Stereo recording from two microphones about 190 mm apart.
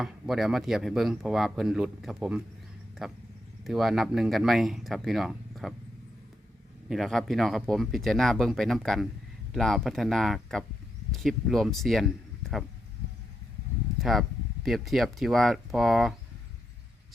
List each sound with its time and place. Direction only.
0.0 s speech: centre (ahead or behind)
6.8 s speech: centre (ahead or behind)
14.0 s speech: centre (ahead or behind)